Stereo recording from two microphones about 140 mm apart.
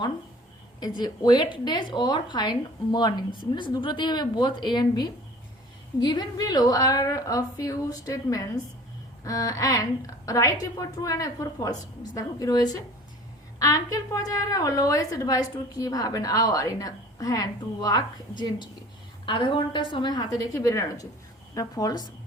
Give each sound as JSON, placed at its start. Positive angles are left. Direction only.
{"t": 0.8, "sound": "a woman's voice", "side_deg": 30}